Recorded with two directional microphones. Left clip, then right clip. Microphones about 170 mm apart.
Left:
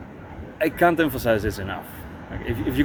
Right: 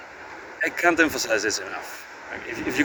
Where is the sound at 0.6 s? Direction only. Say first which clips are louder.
Left 1 dB; 10° left (ahead or behind).